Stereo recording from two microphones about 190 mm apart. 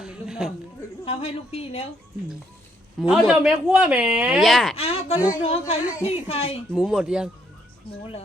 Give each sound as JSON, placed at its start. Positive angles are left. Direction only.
{"t": 0.0, "sound": "a sound", "side_deg": -5}
{"t": 1.0, "sound": "a woman's voice", "side_deg": 30}
{"t": 3.0, "sound": "speech", "side_deg": 0}
{"t": 4.8, "sound": "a woman's voice", "side_deg": 35}
{"t": 6.7, "sound": "speech", "side_deg": -5}